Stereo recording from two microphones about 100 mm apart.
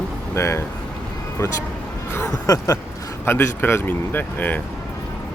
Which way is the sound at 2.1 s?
30° left (ahead or behind).